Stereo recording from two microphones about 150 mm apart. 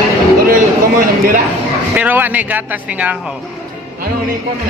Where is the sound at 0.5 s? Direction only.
75° right (ahead or behind).